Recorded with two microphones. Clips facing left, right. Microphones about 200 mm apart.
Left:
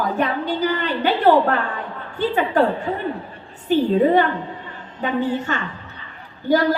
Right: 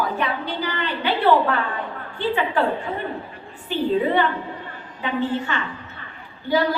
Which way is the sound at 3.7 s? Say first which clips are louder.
Left 7 dB; 45° left (ahead or behind).